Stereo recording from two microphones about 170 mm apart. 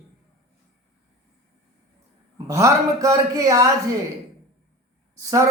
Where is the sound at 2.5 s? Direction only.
20° right (ahead or behind).